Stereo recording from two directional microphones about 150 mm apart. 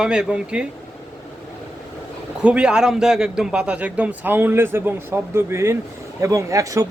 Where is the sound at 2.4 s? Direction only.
5° right (ahead or behind); by 6.8 s 20° right (ahead or behind).